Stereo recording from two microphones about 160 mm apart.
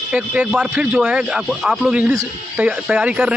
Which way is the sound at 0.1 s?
5° right (ahead or behind).